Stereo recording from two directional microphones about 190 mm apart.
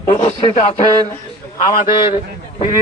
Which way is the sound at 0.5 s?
40° left (ahead or behind).